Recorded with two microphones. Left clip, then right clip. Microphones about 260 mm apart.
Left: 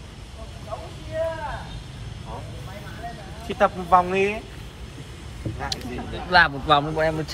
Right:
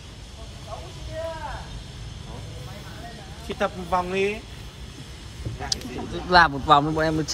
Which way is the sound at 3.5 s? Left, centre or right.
Centre.